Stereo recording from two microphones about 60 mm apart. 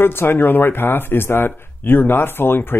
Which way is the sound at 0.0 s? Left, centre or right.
Left.